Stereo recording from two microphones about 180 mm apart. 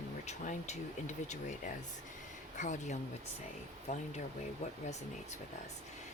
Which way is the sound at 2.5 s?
40° left (ahead or behind).